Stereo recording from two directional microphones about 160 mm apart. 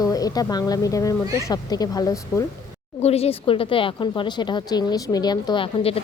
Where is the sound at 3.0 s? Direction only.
40° left (ahead or behind).